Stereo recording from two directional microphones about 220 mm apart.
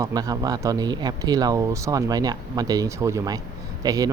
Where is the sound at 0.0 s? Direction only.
15° right (ahead or behind).